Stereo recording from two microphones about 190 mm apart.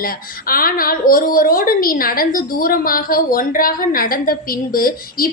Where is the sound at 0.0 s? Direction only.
50° left (ahead or behind).